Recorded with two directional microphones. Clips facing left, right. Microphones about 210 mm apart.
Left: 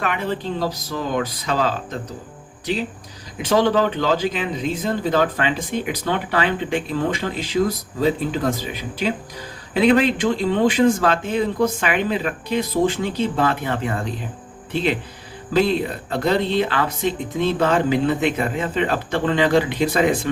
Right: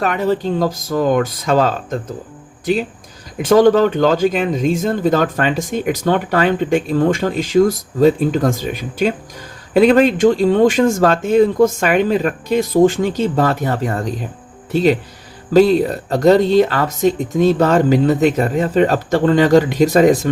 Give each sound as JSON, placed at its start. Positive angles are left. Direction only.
{"t": 0.0, "sound": "speech", "side_deg": -40}
{"t": 3.4, "sound": "speech", "side_deg": -45}